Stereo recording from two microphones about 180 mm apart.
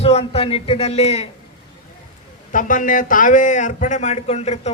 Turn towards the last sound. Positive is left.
turn(degrees=40)  # may be behind; listen again after turning